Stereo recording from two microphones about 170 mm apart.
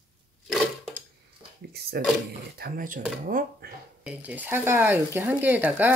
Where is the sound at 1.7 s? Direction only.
70° right (ahead or behind).